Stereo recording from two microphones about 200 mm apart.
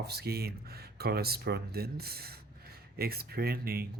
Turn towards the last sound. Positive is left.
turn(degrees=-50)  # may be behind; listen again after turning